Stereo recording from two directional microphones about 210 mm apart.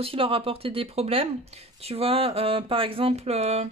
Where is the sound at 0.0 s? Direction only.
25° right (ahead or behind).